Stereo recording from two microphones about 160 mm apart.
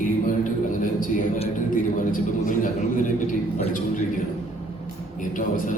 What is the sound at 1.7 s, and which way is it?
A man's voice, 55° left (ahead or behind).